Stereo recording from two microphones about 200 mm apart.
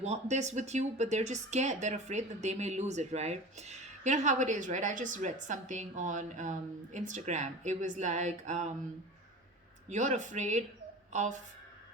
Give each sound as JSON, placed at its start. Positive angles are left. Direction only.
{"t": 0.0, "sound": "speech", "side_deg": -35}
{"t": 9.9, "sound": "speech", "side_deg": -35}